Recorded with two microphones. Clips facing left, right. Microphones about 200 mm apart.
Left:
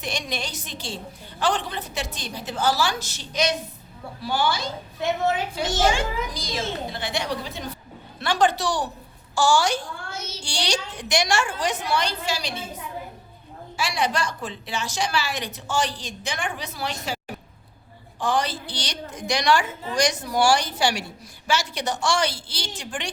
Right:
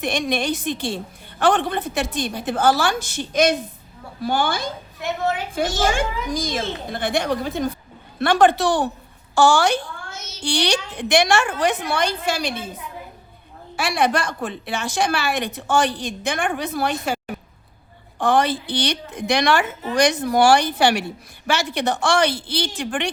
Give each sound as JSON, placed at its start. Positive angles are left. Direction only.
{"t": 0.0, "sound": "a woman's voice", "side_deg": -55}
{"t": 10.1, "sound": "child singing", "side_deg": 30}
{"t": 10.4, "sound": "a woman's voice", "side_deg": -60}
{"t": 13.7, "sound": "a woman's voice", "side_deg": -55}
{"t": 18.2, "sound": "a woman's voice", "side_deg": -55}